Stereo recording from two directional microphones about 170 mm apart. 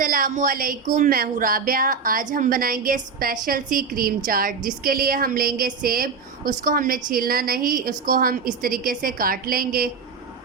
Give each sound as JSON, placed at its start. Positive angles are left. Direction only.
{"t": 0.0, "sound": "a woman's voice", "side_deg": -55}